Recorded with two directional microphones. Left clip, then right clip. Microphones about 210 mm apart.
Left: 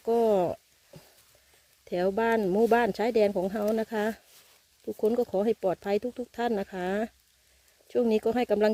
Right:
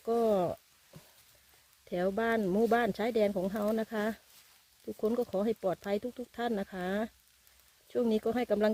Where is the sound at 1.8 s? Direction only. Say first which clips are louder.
Left 5 dB; 30° left (ahead or behind).